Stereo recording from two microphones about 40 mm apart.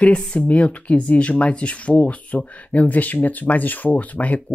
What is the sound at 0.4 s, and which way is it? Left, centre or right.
Speech, left.